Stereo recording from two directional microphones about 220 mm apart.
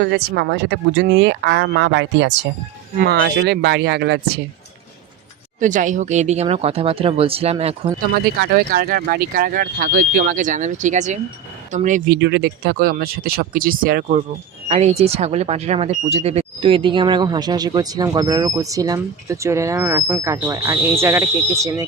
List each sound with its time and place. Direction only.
0.1 s speech: 50° right (ahead or behind)
5.5 s speech: 35° right (ahead or behind)
8.4 s speech: 45° right (ahead or behind); by 21.8 s 15° right (ahead or behind)